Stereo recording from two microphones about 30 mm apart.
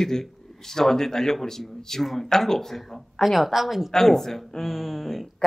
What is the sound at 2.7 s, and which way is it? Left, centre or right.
A woman's voice, centre.